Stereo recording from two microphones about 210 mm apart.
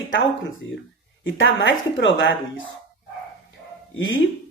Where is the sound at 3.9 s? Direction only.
65° left (ahead or behind).